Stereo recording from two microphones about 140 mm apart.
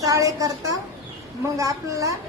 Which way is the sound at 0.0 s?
25° right (ahead or behind).